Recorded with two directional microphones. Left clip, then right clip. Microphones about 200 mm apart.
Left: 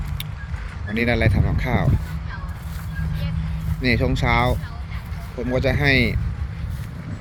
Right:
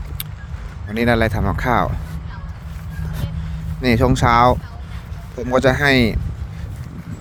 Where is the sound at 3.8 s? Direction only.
40° right (ahead or behind).